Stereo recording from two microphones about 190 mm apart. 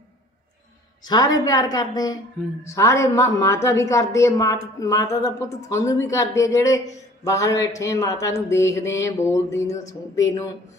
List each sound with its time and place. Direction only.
1.0 s a woman's voice: 20° left (ahead or behind)